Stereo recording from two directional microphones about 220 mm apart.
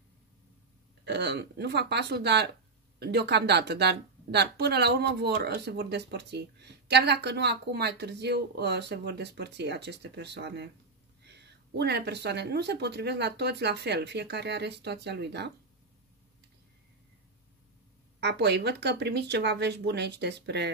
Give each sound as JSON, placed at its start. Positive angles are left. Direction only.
{"t": 1.0, "sound": "a woman's voice", "side_deg": -50}
{"t": 18.2, "sound": "a woman's voice", "side_deg": -50}